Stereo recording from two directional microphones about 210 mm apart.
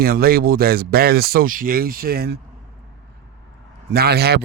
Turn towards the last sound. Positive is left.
turn(degrees=-50)  # may be behind; listen again after turning